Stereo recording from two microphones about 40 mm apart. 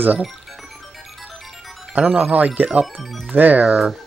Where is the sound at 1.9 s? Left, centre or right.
Right.